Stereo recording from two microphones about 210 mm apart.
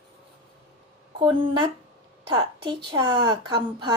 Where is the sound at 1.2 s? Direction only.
25° right (ahead or behind).